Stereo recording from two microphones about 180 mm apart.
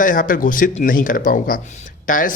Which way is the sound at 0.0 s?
50° left (ahead or behind).